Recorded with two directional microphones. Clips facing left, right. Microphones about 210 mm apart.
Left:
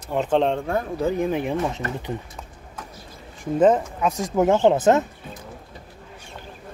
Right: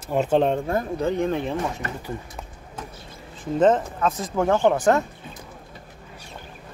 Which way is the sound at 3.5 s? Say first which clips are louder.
Left 1 dB; 10° left (ahead or behind).